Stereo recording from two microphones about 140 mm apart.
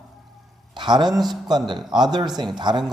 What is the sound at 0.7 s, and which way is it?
Speech, 35° right (ahead or behind).